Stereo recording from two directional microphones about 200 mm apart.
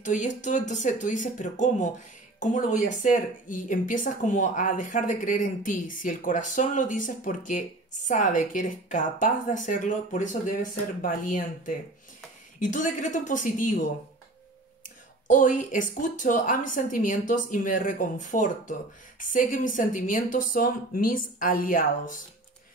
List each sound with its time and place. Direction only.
0.0 s a woman's voice: 40° left (ahead or behind)
15.2 s a woman's voice: 40° left (ahead or behind)